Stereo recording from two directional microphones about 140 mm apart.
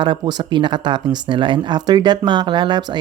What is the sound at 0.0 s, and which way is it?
Speech, 35° right (ahead or behind).